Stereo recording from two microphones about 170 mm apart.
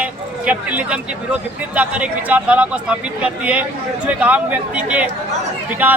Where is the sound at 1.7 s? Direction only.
10° right (ahead or behind).